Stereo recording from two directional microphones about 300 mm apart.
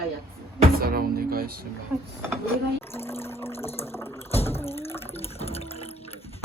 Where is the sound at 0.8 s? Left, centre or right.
Right.